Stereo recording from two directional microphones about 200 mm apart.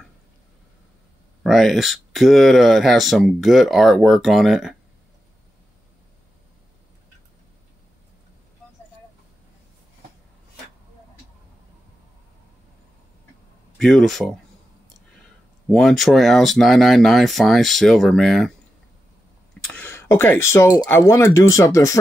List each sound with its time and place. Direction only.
1.4 s speech: centre (ahead or behind)
13.7 s speech: centre (ahead or behind)
15.7 s speech: centre (ahead or behind)
19.6 s speech: 5° left (ahead or behind)